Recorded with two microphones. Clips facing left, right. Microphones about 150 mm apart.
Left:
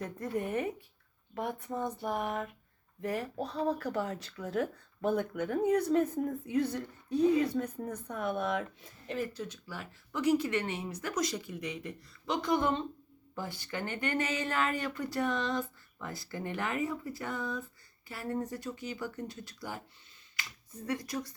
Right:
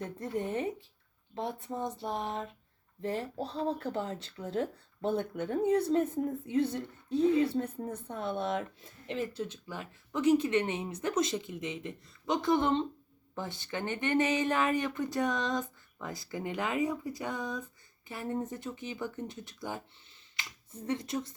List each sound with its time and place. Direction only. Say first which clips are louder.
0.3 s speech: even; 25° right (ahead or behind)
20.8 s speech: right 2 dB; 25° right (ahead or behind)